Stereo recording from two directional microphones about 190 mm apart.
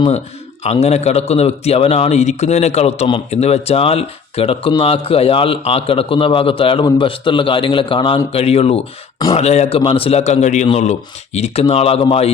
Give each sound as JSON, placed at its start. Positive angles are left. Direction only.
{"t": 0.6, "sound": "a man's voice", "side_deg": 35}